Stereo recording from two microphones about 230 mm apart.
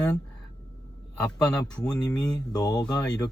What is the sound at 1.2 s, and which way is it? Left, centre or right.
Speech, centre.